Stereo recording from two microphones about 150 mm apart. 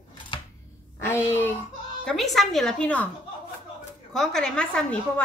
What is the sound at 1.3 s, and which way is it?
Speech, 15° left (ahead or behind).